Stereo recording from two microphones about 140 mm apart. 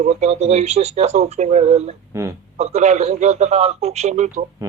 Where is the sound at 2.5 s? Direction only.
50° right (ahead or behind).